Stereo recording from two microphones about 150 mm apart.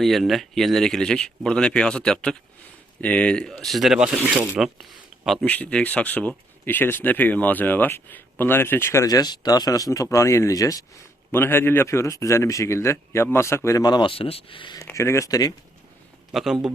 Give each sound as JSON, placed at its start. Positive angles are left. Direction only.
{"t": 0.0, "sound": "speech", "side_deg": 0}
{"t": 5.5, "sound": "a man's voice", "side_deg": 10}
{"t": 14.8, "sound": "a man's voice", "side_deg": 20}
{"t": 16.3, "sound": "speech", "side_deg": 0}